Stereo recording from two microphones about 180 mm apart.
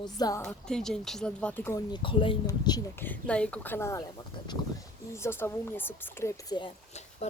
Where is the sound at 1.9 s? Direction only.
30° left (ahead or behind).